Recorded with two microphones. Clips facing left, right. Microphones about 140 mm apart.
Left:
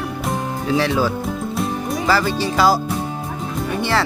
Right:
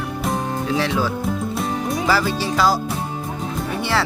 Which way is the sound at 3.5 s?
Centre (ahead or behind).